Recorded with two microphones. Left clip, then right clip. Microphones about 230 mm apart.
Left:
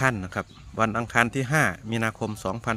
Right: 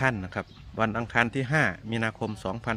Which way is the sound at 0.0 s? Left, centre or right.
Centre.